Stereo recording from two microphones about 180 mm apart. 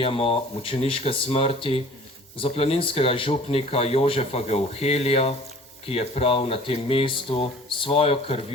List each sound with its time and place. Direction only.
0.0 s speech: 30° left (ahead or behind)